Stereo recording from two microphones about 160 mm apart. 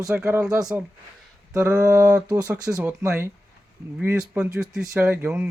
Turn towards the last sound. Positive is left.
turn(degrees=-10)  # may be behind; listen again after turning